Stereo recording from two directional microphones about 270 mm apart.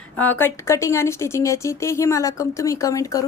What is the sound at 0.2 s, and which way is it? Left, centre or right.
Speech, centre.